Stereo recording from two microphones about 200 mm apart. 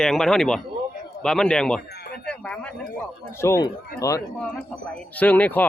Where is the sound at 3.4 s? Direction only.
15° left (ahead or behind).